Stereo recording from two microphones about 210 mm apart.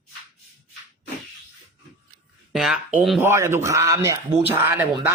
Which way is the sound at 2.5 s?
Centre (ahead or behind).